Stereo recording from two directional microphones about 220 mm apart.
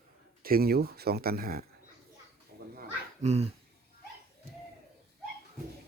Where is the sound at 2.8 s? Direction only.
30° right (ahead or behind).